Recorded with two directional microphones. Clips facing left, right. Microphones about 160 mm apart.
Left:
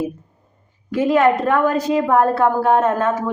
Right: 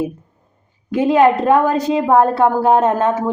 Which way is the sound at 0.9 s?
25° right (ahead or behind).